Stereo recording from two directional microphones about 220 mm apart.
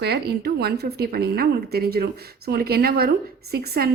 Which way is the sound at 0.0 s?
45° right (ahead or behind).